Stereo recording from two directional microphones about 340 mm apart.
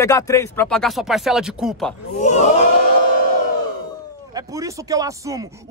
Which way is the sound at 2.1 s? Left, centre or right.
Left.